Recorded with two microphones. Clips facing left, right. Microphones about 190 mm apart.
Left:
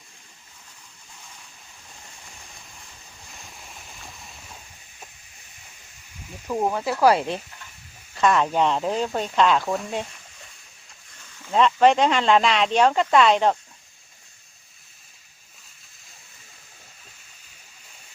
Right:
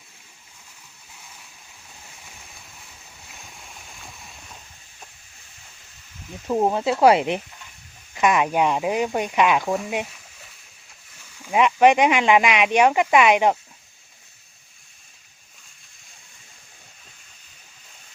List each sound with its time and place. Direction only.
2.3 s boat: 5° right (ahead or behind)
6.5 s speech: 25° right (ahead or behind)
11.2 s speech: 10° right (ahead or behind)